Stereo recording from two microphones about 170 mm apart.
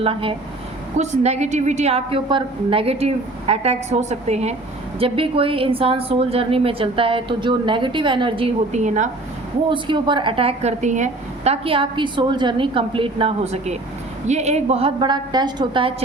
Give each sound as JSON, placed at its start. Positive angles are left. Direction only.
{"t": 0.0, "sound": "a woman's voice", "side_deg": -30}
{"t": 9.6, "sound": "a woman's voice", "side_deg": -30}